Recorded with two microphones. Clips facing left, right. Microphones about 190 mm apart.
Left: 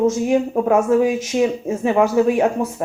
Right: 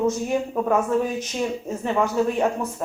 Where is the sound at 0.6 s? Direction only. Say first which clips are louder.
Left 6 dB; 10° left (ahead or behind).